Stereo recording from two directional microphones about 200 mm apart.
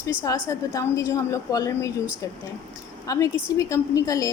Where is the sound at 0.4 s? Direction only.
15° left (ahead or behind).